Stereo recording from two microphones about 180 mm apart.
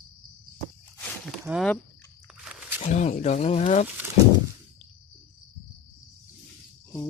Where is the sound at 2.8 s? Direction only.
45° left (ahead or behind).